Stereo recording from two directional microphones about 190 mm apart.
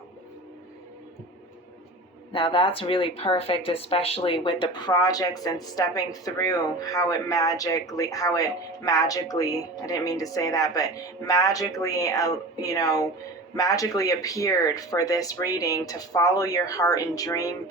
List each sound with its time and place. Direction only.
2.3 s speech: 25° left (ahead or behind)